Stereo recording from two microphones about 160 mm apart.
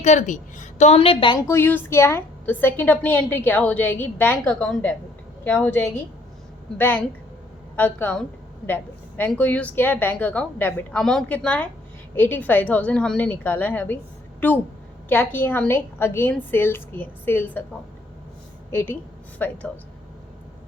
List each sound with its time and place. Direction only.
0.0 s a woman's voice: 50° left (ahead or behind)
1.4 s a woman's voice: 15° left (ahead or behind)
18.7 s a woman's voice: 15° left (ahead or behind)